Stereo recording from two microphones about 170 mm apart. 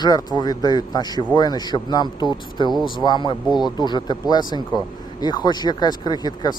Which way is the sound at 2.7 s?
Centre (ahead or behind).